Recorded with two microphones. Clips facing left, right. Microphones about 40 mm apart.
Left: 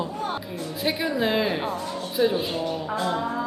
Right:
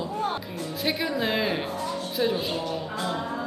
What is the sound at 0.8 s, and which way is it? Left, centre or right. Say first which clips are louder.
A woman's voice: left 2 dB; centre.